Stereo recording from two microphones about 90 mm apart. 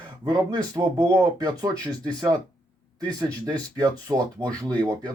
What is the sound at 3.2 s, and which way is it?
Speech, 45° right (ahead or behind).